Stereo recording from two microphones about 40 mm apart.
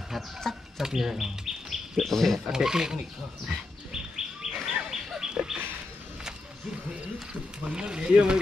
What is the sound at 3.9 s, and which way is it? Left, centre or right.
Bird, centre.